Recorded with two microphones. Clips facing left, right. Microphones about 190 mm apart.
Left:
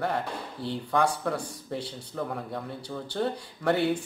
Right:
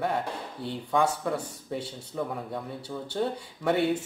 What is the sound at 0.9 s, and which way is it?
Speech, 5° right (ahead or behind).